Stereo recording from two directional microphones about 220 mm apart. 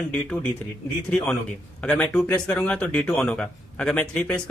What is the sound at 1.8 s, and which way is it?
Speech, 5° left (ahead or behind).